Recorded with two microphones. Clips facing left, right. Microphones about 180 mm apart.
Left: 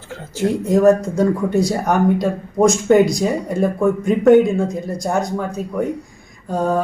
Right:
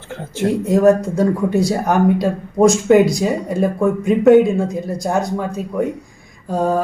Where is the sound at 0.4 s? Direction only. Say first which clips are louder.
Even; centre (ahead or behind).